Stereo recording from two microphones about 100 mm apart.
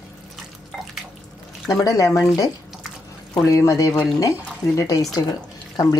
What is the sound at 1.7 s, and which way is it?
Speech, 35° left (ahead or behind).